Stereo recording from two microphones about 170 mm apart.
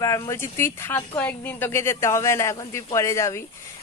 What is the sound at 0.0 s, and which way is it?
Speech, 20° left (ahead or behind).